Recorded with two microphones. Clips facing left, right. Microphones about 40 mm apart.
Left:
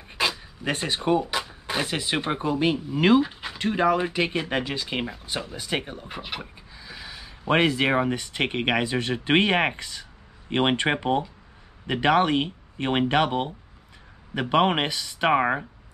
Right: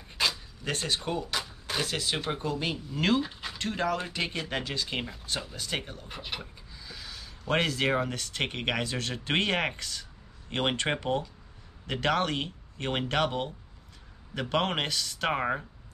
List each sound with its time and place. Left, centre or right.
0.1 s speech: centre